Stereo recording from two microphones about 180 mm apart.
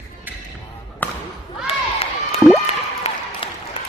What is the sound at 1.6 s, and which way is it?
Crowd, 35° left (ahead or behind).